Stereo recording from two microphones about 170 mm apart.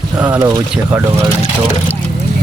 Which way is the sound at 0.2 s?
10° right (ahead or behind).